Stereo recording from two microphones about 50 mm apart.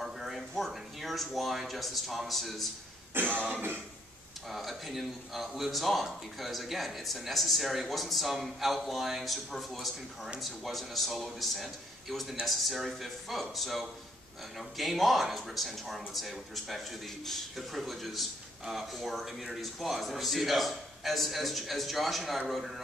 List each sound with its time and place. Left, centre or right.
0.0 s a sound: centre
0.7 s speech: centre
3.1 s throat clearing: right
4.5 s a man's voice: centre